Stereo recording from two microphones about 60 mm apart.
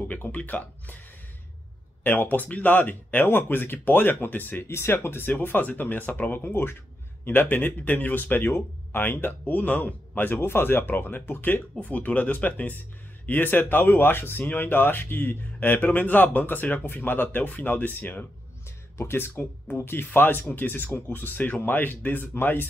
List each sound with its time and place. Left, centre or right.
0.1 s speech: left
2.0 s speech: left
11.8 s speech: left